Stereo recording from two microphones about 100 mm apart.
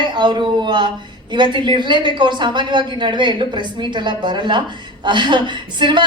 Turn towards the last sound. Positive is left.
turn(degrees=-50)  # may be behind; listen again after turning